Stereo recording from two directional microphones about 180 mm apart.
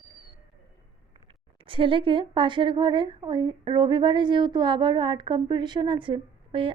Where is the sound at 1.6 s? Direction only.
30° right (ahead or behind).